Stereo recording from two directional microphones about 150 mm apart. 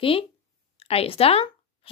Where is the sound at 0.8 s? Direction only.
40° left (ahead or behind).